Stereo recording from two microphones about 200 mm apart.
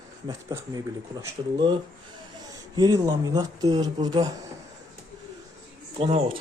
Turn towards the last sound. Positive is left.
turn(degrees=-30)  # may be behind; listen again after turning